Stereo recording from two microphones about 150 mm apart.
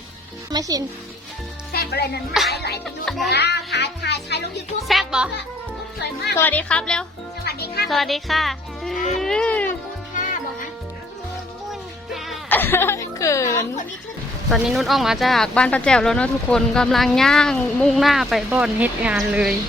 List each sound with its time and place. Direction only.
0.5 s speech: 25° right (ahead or behind)
1.7 s music: 90° left
2.5 s a child's voice: 90° left
2.8 s speech: centre (ahead or behind)
3.3 s a child's voice: 90° left
4.9 s speech: 5° right (ahead or behind)
6.3 s speech: 10° left (ahead or behind)
7.4 s a child's voice: 90° left
7.9 s speech: centre (ahead or behind)
11.7 s music: centre (ahead or behind)
12.5 s chuckle: 15° left (ahead or behind)
14.5 s speech: centre (ahead or behind)